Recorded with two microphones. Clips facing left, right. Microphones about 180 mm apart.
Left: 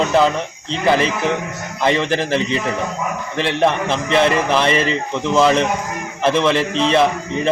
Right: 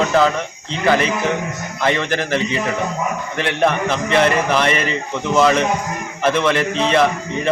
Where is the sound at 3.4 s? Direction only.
Centre (ahead or behind).